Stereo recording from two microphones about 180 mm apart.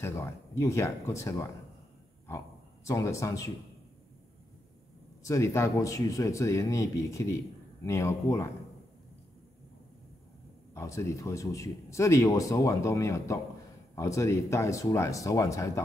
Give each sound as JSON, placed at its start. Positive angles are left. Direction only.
{"t": 0.0, "sound": "speech", "side_deg": 15}
{"t": 5.2, "sound": "speech", "side_deg": 15}
{"t": 10.7, "sound": "speech", "side_deg": 15}